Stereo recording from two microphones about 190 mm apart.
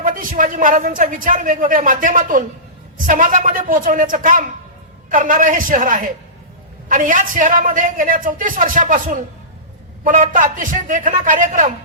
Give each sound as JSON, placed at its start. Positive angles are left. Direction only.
{"t": 0.0, "sound": "a man's voice", "side_deg": -45}